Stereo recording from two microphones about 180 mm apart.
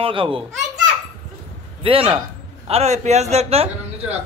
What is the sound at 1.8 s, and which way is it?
A man's voice, 30° right (ahead or behind).